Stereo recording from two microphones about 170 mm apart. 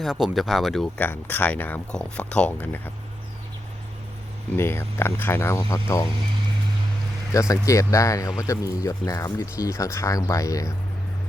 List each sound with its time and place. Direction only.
0.0 s speech: centre (ahead or behind)
4.5 s speech: 15° left (ahead or behind)
7.3 s speech: 20° left (ahead or behind)